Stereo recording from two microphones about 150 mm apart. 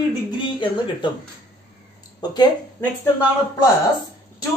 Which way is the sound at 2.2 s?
25° left (ahead or behind).